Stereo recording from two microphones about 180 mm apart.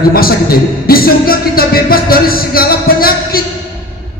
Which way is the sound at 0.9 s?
55° left (ahead or behind).